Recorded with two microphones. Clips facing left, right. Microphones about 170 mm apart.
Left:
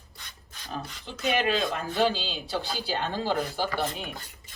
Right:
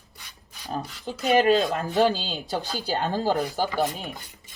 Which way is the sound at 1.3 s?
40° right (ahead or behind).